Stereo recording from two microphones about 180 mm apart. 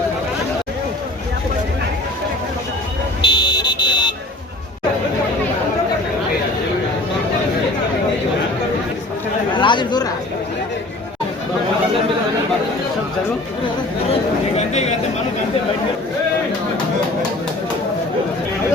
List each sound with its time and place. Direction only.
3.2 s buzzer: 25° left (ahead or behind)
9.6 s chatter: 25° left (ahead or behind)
14.1 s a sound: 35° left (ahead or behind)